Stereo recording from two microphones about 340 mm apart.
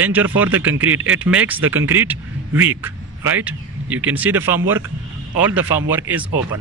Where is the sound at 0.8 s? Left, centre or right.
Right.